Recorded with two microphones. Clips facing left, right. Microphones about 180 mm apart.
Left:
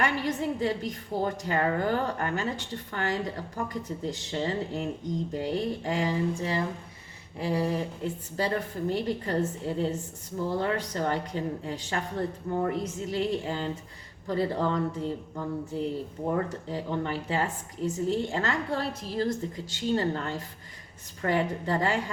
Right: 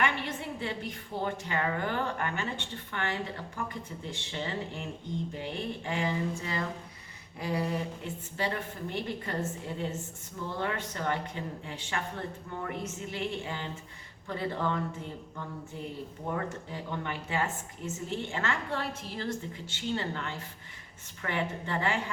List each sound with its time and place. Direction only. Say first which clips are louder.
0.0 s a woman's voice: left 4 dB; 40° left (ahead or behind)